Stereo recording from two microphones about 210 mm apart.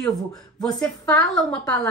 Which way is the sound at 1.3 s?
5° left (ahead or behind).